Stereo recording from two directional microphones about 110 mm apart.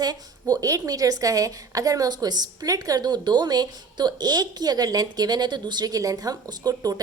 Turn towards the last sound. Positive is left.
turn(degrees=-35)  # may be behind; listen again after turning